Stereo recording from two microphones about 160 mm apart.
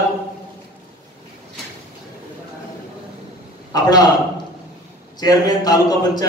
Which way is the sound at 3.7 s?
25° left (ahead or behind).